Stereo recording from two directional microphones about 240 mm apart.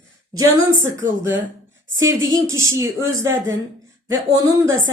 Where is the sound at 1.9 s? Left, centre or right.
Centre.